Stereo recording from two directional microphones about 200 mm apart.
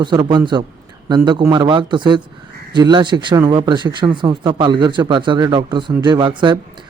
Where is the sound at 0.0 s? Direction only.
25° right (ahead or behind).